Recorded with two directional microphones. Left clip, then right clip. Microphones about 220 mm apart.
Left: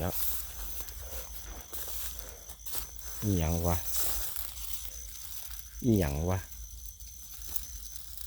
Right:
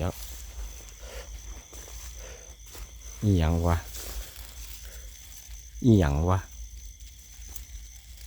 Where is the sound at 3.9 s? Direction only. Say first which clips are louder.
Left 4 dB; 45° left (ahead or behind).